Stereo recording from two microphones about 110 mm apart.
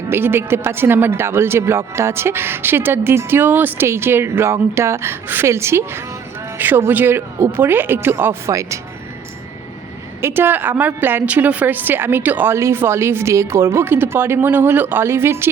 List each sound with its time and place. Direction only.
0.1 s speech: 20° right (ahead or behind)
10.2 s speech: 20° right (ahead or behind)